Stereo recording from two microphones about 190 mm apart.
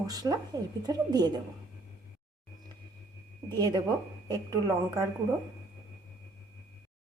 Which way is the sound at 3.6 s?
25° right (ahead or behind).